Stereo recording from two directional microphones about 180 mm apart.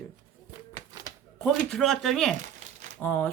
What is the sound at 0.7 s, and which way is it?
Typewriter, 20° right (ahead or behind).